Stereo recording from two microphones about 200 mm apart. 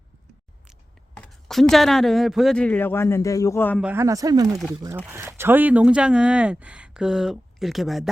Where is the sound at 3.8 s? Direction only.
10° right (ahead or behind).